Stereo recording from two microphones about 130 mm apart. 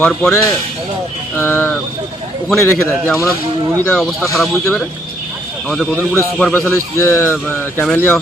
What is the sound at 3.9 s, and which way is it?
Speech, 5° left (ahead or behind).